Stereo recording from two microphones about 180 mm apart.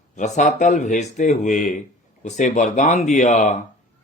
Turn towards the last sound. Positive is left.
turn(degrees=45)  # may be behind; listen again after turning